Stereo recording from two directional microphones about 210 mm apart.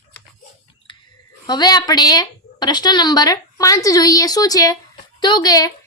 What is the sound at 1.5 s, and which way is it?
A woman's voice, 20° left (ahead or behind).